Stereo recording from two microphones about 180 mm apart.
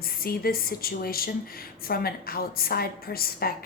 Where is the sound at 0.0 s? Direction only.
55° left (ahead or behind).